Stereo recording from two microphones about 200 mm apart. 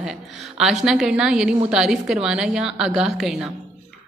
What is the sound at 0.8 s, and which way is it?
A woman's voice, centre (ahead or behind).